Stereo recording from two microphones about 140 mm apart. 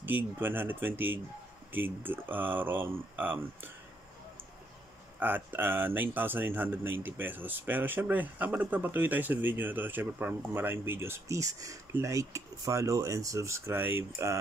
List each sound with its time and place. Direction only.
0.0 s speech: 15° right (ahead or behind)
5.2 s speech: 15° right (ahead or behind)